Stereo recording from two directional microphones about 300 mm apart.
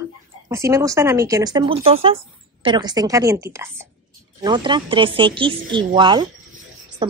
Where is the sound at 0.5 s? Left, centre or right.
Centre.